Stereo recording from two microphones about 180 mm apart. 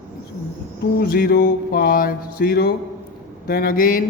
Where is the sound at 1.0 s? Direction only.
55° left (ahead or behind).